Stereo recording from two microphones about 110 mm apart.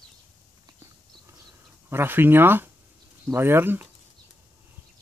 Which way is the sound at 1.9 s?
20° right (ahead or behind).